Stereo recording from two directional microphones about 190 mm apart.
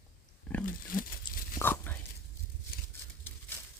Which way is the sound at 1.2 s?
10° left (ahead or behind).